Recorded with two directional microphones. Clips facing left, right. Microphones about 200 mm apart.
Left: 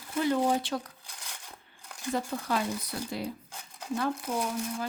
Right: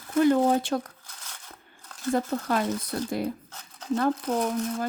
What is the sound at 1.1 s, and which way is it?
Coin, 15° left (ahead or behind).